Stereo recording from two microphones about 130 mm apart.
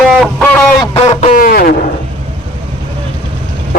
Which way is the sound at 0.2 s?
10° left (ahead or behind).